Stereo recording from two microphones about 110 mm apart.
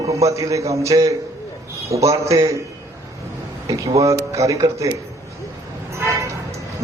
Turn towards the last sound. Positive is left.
turn(degrees=-25)  # may be behind; listen again after turning